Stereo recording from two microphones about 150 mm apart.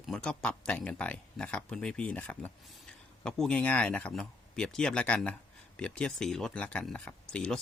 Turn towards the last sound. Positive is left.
turn(degrees=5)  # may be behind; listen again after turning